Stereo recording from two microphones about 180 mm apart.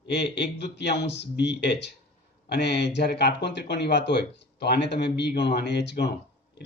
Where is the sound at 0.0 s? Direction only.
75° left (ahead or behind).